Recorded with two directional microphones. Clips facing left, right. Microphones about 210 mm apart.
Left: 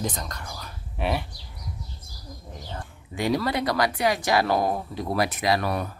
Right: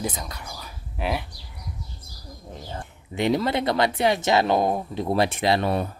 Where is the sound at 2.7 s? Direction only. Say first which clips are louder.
Right 2 dB; 25° right (ahead or behind).